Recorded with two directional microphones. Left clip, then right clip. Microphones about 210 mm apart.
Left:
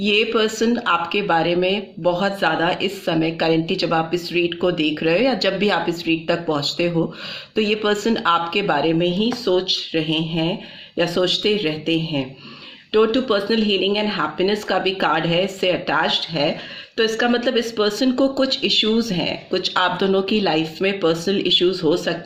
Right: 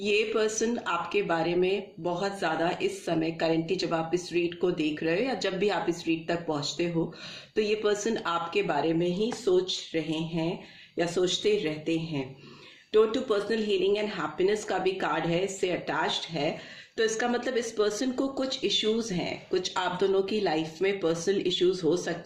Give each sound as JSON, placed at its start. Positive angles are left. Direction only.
{"t": 0.0, "sound": "a woman's voice", "side_deg": 35}